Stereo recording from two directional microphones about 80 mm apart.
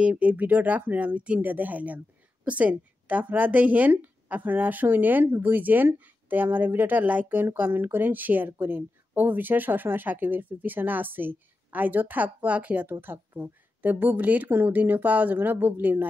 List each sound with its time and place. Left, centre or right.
0.0 s speech: centre